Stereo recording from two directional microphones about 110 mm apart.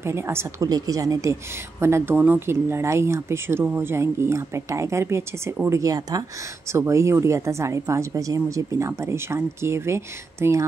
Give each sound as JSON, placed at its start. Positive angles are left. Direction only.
{"t": 0.0, "sound": "a woman's voice", "side_deg": -25}
{"t": 0.7, "sound": "a woman's voice", "side_deg": -35}